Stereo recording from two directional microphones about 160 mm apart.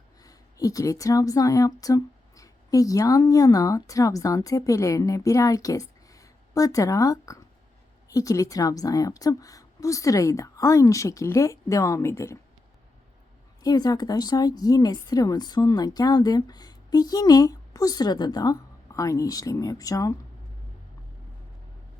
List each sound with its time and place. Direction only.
0.3 s speech: 20° left (ahead or behind)
13.6 s speech: 25° left (ahead or behind)